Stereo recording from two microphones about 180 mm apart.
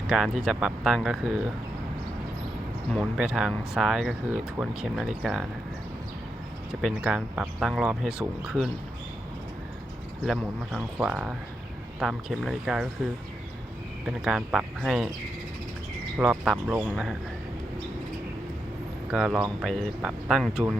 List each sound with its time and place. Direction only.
0.1 s speech: 5° right (ahead or behind)
2.9 s speech: 5° right (ahead or behind)
6.8 s speech: 5° right (ahead or behind)
10.2 s speech: centre (ahead or behind)
14.1 s speech: 5° right (ahead or behind)
16.1 s speech: 5° right (ahead or behind)
19.1 s speech: 5° right (ahead or behind)